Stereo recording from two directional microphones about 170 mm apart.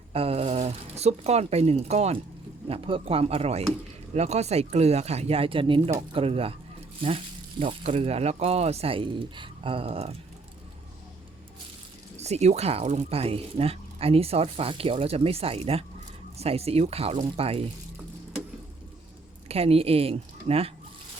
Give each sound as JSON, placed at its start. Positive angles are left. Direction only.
{"t": 0.1, "sound": "speech", "side_deg": -35}
{"t": 7.6, "sound": "speech", "side_deg": -35}
{"t": 12.1, "sound": "speech", "side_deg": -40}
{"t": 19.5, "sound": "speech", "side_deg": -35}